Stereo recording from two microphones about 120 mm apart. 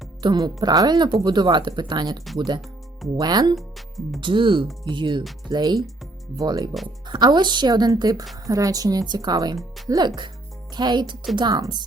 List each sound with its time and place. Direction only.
0.2 s speech: 40° right (ahead or behind)
3.2 s speech: 35° right (ahead or behind)
3.5 s speech: centre (ahead or behind)
4.2 s speech: 45° right (ahead or behind)
9.6 s speech: centre (ahead or behind)
10.8 s speech: 35° right (ahead or behind)